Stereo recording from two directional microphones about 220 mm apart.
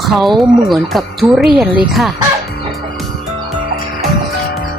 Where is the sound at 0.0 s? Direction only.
Centre (ahead or behind).